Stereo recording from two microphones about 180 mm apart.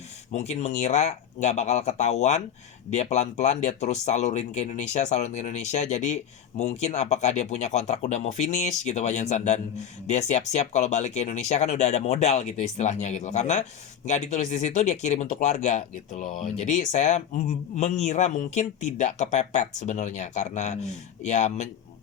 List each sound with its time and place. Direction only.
0.3 s speech: 40° left (ahead or behind)